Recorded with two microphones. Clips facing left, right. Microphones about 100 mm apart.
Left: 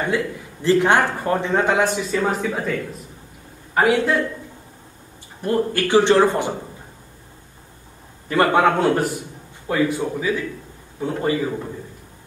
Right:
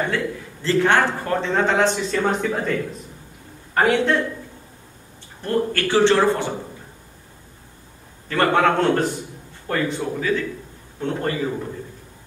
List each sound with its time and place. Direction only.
0.1 s a man's voice: 15° left (ahead or behind)
5.4 s a man's voice: 15° left (ahead or behind)
8.3 s a man's voice: 15° left (ahead or behind)